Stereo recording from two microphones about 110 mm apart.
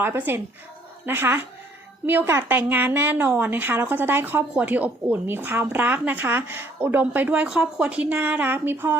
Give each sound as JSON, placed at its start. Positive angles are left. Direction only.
{"t": 0.0, "sound": "a woman's voice", "side_deg": -20}